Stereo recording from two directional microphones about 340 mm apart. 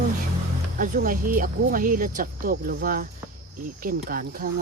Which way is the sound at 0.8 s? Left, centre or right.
Right.